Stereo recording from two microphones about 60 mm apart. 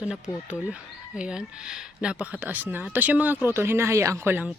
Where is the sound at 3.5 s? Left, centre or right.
Right.